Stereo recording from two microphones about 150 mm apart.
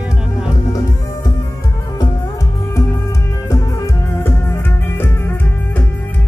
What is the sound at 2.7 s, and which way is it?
Music, 20° left (ahead or behind).